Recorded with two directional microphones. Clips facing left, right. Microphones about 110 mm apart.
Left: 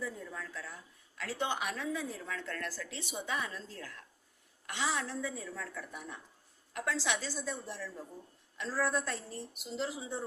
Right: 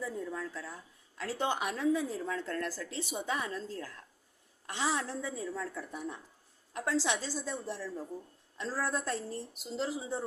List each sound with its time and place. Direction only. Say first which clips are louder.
0.0 s a woman's voice: right 4 dB; 25° right (ahead or behind)